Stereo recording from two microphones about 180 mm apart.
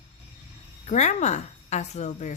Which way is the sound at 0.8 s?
40° left (ahead or behind).